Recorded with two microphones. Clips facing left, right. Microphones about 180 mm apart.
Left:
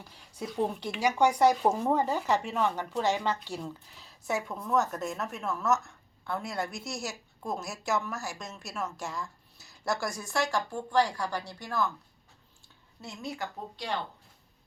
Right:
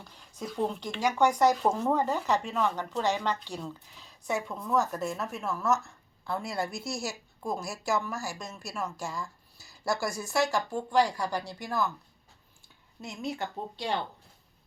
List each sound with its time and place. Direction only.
0.0 s a woman's voice: 10° left (ahead or behind); by 13.9 s 25° right (ahead or behind)